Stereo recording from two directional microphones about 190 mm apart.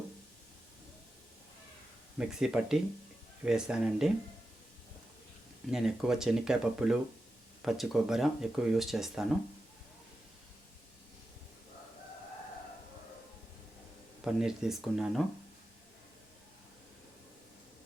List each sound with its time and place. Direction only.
2.1 s speech: 5° right (ahead or behind)
5.7 s speech: 5° right (ahead or behind)
14.3 s speech: 5° right (ahead or behind)